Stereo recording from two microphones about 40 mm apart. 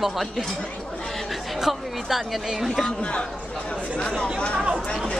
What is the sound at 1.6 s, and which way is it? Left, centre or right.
Speech, centre.